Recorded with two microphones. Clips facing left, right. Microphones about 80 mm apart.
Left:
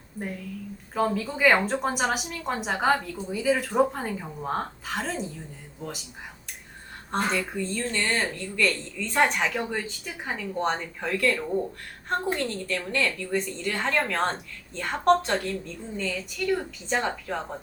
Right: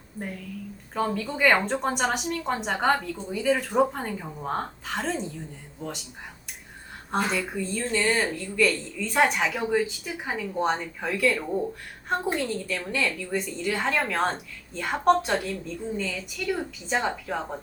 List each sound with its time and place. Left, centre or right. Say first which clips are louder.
0.9 s a woman's voice: left 1 dB; centre
7.1 s speech: even; centre
16.4 s a woman's voice: left 2 dB; centre